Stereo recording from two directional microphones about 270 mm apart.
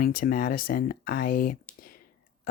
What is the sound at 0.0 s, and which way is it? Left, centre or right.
Speech, left.